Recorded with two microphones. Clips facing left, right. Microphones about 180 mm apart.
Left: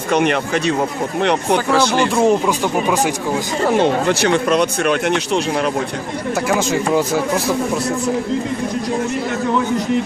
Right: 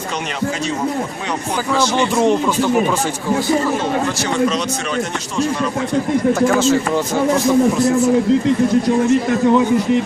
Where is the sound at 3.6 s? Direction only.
65° left (ahead or behind).